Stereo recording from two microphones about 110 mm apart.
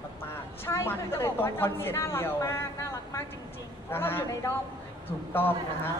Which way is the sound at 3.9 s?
20° left (ahead or behind).